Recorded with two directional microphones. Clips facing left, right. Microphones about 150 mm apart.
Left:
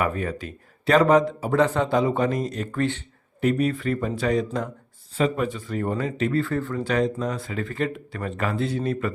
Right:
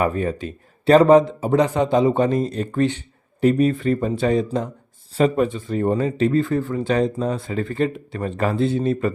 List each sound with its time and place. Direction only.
0.0 s speech: 30° right (ahead or behind)
5.1 s speech: 35° right (ahead or behind)
5.5 s speech: 25° right (ahead or behind)
6.4 s speech: 15° right (ahead or behind)
6.8 s speech: 30° right (ahead or behind)